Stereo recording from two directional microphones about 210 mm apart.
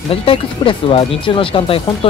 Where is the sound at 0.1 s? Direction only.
25° left (ahead or behind).